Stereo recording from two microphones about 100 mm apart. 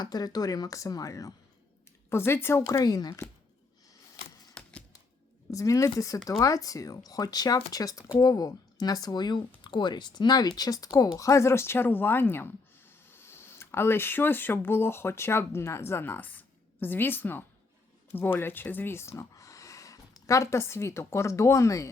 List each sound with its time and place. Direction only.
0.0 s speech: 40° left (ahead or behind)
2.0 s speech: 25° left (ahead or behind)
2.6 s speech: 40° left (ahead or behind)
4.6 s typewriter: 10° left (ahead or behind)
5.5 s speech: 35° left (ahead or behind)